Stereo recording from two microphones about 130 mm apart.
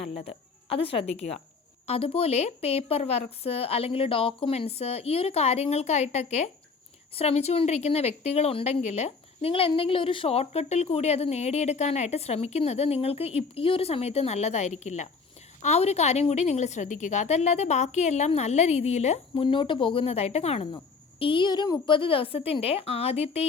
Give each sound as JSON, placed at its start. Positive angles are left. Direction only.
{"t": 0.1, "sound": "a woman's voice", "side_deg": 50}
{"t": 19.5, "sound": "speech", "side_deg": 40}
{"t": 21.2, "sound": "speech", "side_deg": 40}